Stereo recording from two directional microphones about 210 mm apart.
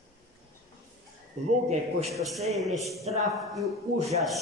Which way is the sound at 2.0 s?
Centre (ahead or behind).